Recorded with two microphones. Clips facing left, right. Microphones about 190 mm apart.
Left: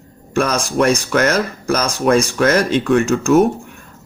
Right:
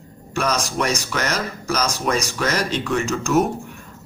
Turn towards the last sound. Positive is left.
turn(degrees=50)  # may be behind; listen again after turning